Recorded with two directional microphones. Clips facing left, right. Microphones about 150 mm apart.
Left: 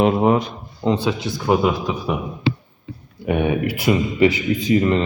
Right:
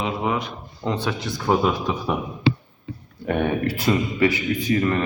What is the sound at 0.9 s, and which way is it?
A man's voice, 10° left (ahead or behind).